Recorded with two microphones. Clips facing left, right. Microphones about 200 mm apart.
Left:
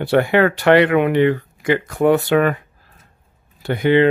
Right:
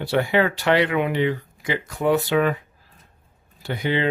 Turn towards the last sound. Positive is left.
turn(degrees=60)  # may be behind; listen again after turning